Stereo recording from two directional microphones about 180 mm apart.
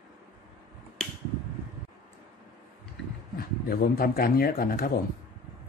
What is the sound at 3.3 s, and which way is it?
Speech, 55° left (ahead or behind).